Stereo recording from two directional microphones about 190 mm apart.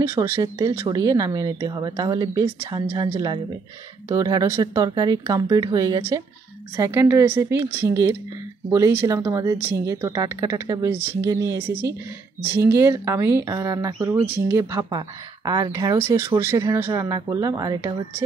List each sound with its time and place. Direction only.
0.0 s speech: 15° right (ahead or behind)